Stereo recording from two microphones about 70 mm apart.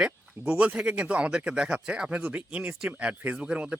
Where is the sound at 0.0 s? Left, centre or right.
Centre.